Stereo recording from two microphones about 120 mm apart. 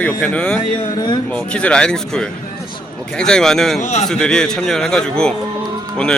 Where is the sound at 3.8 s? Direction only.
75° left (ahead or behind).